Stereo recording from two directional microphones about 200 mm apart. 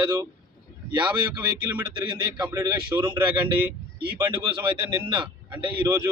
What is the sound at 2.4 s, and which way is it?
Speech, 15° right (ahead or behind).